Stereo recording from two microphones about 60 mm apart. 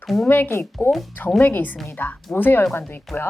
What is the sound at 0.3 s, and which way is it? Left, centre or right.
A woman's voice, left.